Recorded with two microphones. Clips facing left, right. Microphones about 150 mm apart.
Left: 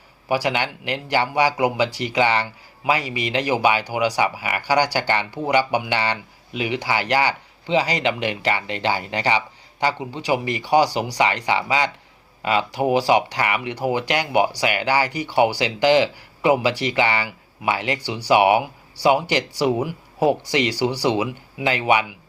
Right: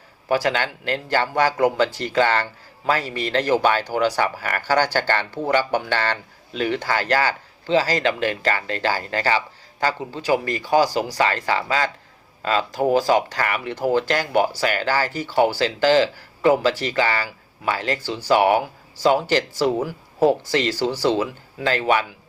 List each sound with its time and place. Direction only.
0.3 s speech: 15° left (ahead or behind)